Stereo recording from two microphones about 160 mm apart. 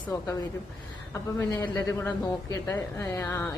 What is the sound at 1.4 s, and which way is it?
A woman's voice, 20° left (ahead or behind).